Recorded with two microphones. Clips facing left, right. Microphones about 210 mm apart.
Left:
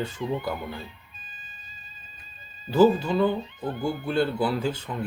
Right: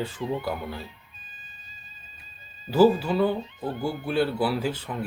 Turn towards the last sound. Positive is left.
turn(degrees=-5)  # may be behind; listen again after turning